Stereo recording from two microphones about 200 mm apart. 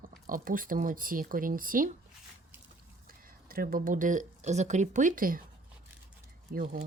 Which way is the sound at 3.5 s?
45° right (ahead or behind).